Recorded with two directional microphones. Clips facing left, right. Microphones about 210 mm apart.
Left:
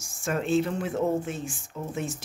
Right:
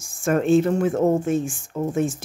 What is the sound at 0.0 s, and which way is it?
Speech, 50° right (ahead or behind).